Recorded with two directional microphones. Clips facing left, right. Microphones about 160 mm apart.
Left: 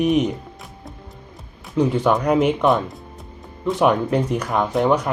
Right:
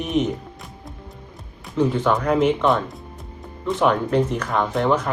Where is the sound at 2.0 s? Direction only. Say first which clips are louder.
Left 2 dB; 10° left (ahead or behind).